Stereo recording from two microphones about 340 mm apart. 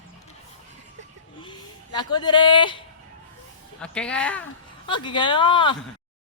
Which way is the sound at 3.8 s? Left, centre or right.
Centre.